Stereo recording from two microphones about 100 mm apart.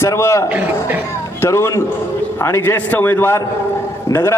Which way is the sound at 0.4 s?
15° right (ahead or behind).